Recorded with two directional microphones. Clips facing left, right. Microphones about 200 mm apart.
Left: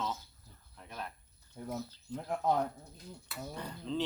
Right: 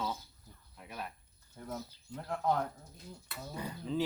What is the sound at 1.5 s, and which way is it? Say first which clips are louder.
Speech: left 3 dB; 10° left (ahead or behind).